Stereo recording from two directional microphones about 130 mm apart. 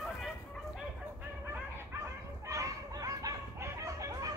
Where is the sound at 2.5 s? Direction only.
25° right (ahead or behind).